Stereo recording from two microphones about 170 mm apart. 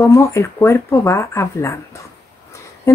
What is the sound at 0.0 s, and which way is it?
Speech, 15° left (ahead or behind).